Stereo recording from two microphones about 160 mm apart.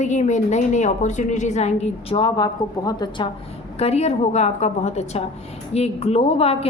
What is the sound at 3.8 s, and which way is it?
A woman's voice, 40° left (ahead or behind).